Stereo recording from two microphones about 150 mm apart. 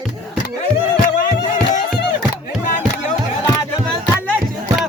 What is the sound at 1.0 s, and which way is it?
Music, 65° left (ahead or behind).